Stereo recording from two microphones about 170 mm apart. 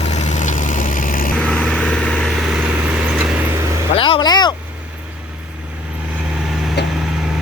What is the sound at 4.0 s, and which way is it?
Speech, 30° left (ahead or behind).